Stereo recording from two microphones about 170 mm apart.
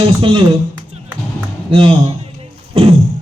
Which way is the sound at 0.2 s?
30° right (ahead or behind).